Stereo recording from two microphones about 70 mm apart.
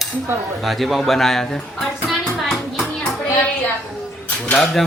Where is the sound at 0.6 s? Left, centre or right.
Centre.